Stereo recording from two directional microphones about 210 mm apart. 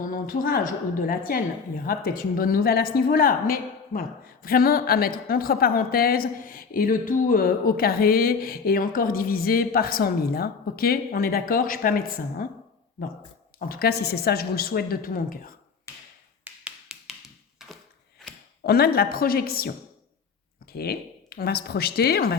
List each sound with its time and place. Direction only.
0.0 s a woman's voice: 40° left (ahead or behind)
15.9 s tap: 10° left (ahead or behind)
16.4 s finger snapping: 5° right (ahead or behind)
18.6 s speech: 50° left (ahead or behind)
20.7 s speech: 50° left (ahead or behind)